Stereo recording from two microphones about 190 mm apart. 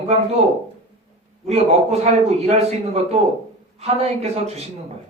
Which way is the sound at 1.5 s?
35° right (ahead or behind).